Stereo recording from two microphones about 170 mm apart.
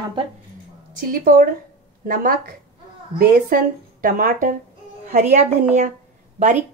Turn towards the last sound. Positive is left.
turn(degrees=-45)  # may be behind; listen again after turning